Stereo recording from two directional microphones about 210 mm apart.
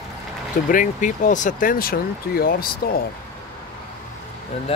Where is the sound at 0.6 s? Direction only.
40° left (ahead or behind).